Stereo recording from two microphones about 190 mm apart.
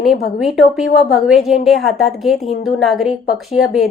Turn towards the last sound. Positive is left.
turn(degrees=0)  # may be behind; listen again after turning